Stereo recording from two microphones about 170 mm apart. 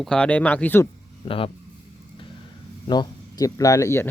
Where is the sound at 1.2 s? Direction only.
30° left (ahead or behind).